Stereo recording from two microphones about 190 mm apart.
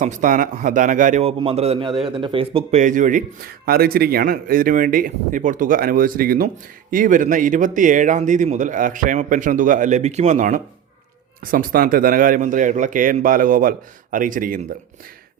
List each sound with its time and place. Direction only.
0.0 s a man's voice: 40° right (ahead or behind)
2.8 s a man's voice: 40° right (ahead or behind)